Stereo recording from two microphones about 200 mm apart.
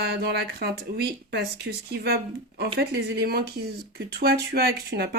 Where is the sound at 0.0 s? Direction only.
55° right (ahead or behind).